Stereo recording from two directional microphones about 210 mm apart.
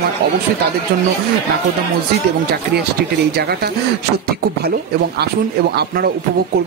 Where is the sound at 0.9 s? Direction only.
45° right (ahead or behind).